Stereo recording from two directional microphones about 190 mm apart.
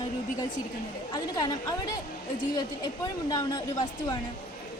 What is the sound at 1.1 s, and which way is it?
Speech, 20° left (ahead or behind).